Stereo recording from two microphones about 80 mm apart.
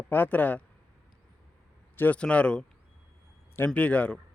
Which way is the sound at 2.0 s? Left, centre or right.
Centre.